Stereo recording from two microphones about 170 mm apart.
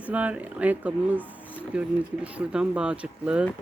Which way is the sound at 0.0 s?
10° right (ahead or behind).